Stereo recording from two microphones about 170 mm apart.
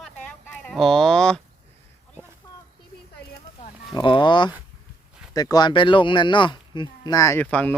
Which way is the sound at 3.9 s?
25° left (ahead or behind).